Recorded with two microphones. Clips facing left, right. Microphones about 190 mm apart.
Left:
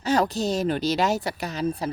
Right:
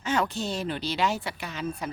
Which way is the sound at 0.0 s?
40° left (ahead or behind).